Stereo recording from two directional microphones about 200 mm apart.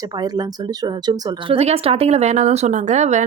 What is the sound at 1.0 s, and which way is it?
Speech, 25° right (ahead or behind).